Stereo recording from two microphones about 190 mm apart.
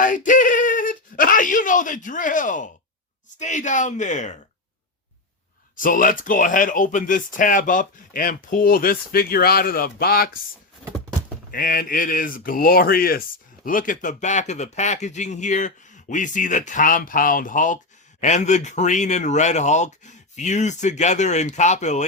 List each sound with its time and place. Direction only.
0.0 s speech: 45° left (ahead or behind)
5.7 s speech: 45° left (ahead or behind)
11.5 s speech: 50° left (ahead or behind)